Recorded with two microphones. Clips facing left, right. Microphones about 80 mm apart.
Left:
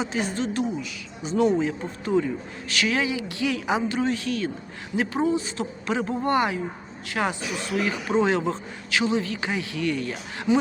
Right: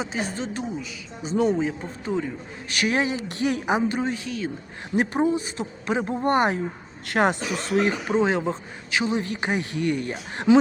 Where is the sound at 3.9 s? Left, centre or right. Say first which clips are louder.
Left 2 dB; centre.